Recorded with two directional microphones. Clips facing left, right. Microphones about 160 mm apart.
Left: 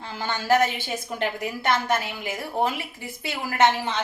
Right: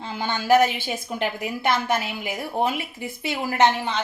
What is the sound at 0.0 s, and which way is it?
A woman's voice, 15° right (ahead or behind).